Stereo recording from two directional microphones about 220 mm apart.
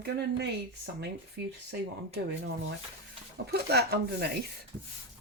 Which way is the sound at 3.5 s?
45° right (ahead or behind).